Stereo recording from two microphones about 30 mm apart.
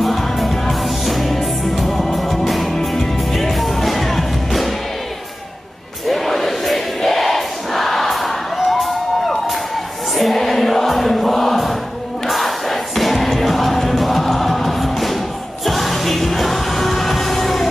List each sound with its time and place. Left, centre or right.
0.0 s music: centre
6.0 s choir: centre
10.1 s music: centre
11.3 s choir: centre
12.3 s music: centre